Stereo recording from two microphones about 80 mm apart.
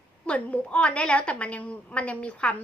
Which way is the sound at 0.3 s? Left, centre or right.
Centre.